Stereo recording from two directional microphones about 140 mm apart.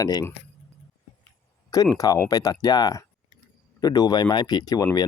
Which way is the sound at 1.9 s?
25° left (ahead or behind).